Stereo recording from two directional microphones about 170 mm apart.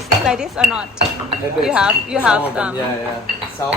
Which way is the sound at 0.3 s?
5° right (ahead or behind).